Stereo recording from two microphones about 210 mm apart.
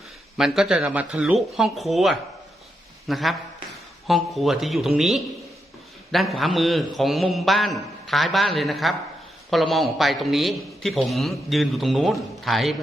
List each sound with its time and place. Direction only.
0.3 s a man's voice: centre (ahead or behind)